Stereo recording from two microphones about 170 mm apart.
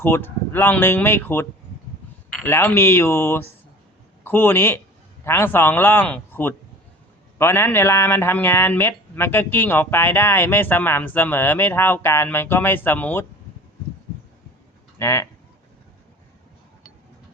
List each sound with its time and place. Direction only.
0.0 s a man's voice: 10° left (ahead or behind)
14.9 s speech: 15° left (ahead or behind)